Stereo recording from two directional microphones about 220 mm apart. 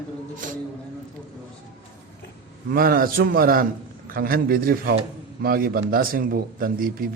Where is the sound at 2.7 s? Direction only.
40° right (ahead or behind).